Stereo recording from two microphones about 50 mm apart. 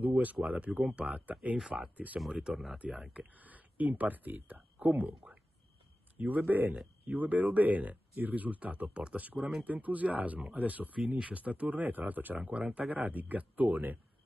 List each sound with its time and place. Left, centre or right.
0.0 s speech: right
2.1 s speech: centre
2.8 s speech: right
6.1 s speech: right
12.4 s speech: right